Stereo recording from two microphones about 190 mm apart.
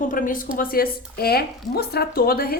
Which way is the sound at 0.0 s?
45° left (ahead or behind).